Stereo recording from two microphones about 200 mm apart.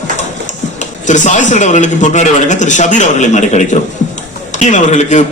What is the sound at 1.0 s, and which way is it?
A man's voice, 35° left (ahead or behind).